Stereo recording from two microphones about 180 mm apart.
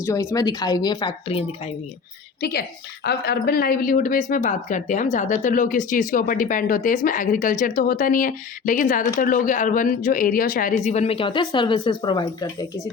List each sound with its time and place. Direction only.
0.0 s a woman's voice: 15° left (ahead or behind); by 1.7 s 30° left (ahead or behind)
2.4 s a woman's voice: 60° left (ahead or behind); by 12.6 s 25° left (ahead or behind)